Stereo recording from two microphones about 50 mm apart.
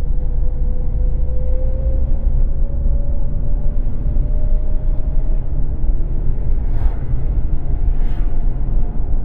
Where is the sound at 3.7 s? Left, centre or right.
Left.